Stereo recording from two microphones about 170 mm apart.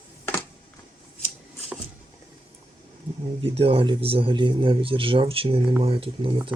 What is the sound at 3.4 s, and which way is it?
A man's voice, 35° right (ahead or behind).